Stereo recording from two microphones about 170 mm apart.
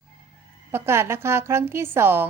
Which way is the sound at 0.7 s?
15° right (ahead or behind).